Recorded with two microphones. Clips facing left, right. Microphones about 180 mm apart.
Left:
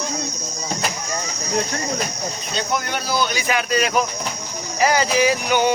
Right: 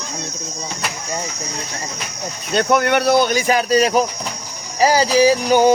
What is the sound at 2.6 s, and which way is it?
Speech, 65° right (ahead or behind).